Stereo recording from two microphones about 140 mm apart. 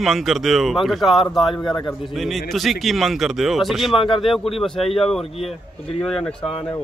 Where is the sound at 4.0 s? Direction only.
35° left (ahead or behind).